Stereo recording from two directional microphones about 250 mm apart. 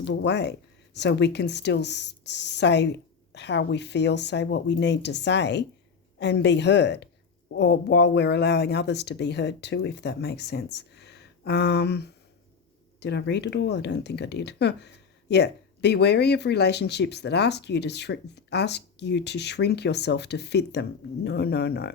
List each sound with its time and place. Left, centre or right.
0.0 s speech: left